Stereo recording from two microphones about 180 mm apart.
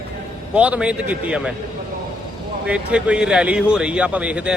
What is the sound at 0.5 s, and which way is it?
A man's voice, 5° right (ahead or behind).